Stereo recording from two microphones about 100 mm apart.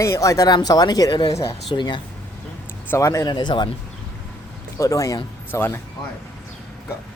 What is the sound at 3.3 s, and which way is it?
Speech, 45° left (ahead or behind).